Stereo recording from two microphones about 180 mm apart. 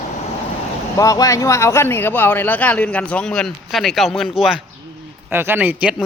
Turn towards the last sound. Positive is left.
turn(degrees=-5)  # may be behind; listen again after turning